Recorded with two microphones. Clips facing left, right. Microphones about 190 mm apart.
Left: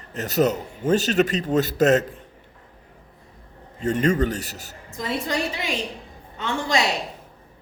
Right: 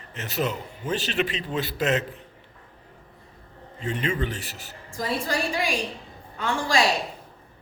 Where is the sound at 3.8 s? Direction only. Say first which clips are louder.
Left 7 dB; 45° left (ahead or behind).